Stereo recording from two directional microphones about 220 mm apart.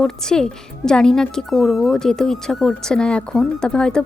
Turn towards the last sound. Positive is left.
turn(degrees=5)  # may be behind; listen again after turning